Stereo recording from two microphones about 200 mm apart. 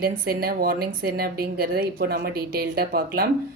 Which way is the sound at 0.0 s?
50° right (ahead or behind).